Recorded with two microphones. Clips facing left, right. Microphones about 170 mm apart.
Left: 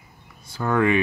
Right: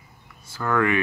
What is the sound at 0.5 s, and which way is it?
Speech, 20° left (ahead or behind).